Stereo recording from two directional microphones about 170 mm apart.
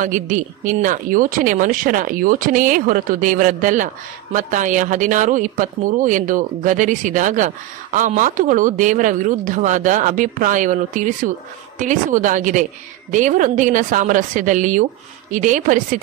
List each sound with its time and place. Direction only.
0.0 s speech: 50° right (ahead or behind)